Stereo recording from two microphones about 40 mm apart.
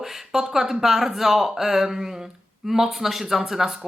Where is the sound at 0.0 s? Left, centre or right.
Centre.